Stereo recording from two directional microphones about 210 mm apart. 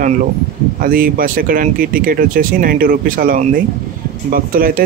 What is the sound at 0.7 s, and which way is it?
Speech, 40° right (ahead or behind).